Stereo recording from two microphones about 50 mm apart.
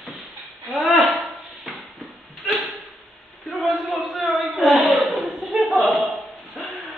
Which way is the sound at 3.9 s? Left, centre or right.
Centre.